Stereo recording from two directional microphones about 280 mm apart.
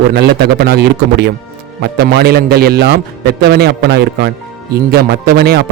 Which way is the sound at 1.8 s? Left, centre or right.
Right.